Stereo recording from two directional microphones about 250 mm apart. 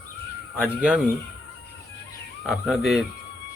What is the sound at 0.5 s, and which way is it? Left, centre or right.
Speech, centre.